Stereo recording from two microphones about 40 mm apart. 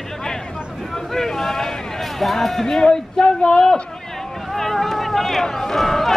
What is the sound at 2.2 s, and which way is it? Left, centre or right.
Speech, centre.